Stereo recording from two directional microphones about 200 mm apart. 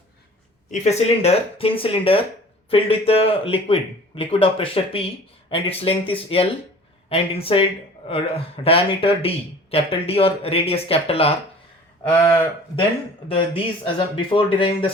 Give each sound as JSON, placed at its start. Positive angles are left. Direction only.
{"t": 0.7, "sound": "speech", "side_deg": 35}
{"t": 13.2, "sound": "speech", "side_deg": 25}